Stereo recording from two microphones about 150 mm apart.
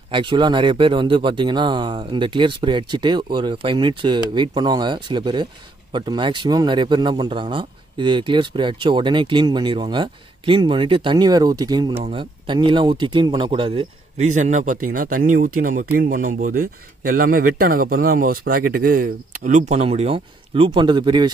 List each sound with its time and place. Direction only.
0.1 s speech: 35° right (ahead or behind)
12.0 s speech: 35° right (ahead or behind)
14.2 s speech: 55° right (ahead or behind); by 21.3 s 30° right (ahead or behind)